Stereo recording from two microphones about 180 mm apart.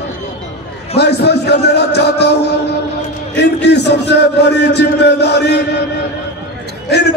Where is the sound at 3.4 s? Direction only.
70° left (ahead or behind).